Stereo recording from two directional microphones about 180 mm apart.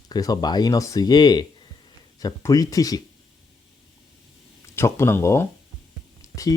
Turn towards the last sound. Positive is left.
turn(degrees=20)  # may be behind; listen again after turning